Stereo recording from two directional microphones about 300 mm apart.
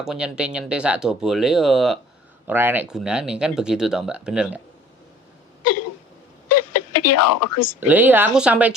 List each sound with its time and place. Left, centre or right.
0.0 s speech: centre
6.5 s a sound: left
7.8 s speech: centre